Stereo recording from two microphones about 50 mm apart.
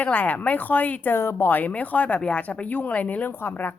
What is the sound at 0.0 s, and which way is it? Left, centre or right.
Speech, left.